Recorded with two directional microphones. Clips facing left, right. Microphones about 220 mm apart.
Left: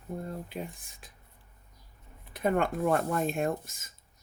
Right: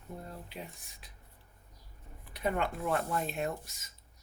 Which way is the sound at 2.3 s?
50° left (ahead or behind).